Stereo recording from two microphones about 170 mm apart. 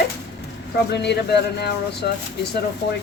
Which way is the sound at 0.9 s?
80° left.